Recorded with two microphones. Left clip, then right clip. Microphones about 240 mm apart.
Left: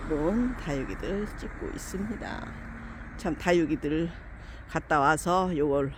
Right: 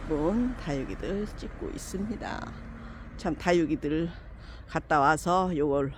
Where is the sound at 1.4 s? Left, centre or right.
Right.